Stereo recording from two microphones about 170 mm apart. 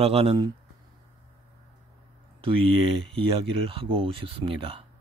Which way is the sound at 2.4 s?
30° right (ahead or behind).